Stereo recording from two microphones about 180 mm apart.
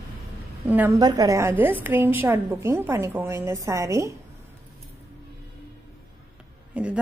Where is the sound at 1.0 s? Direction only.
20° right (ahead or behind).